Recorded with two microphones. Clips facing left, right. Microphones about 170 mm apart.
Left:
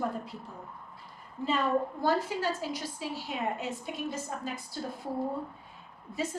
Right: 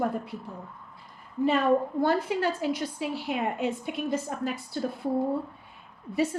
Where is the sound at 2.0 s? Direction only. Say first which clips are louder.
Right 3 dB; 60° right (ahead or behind).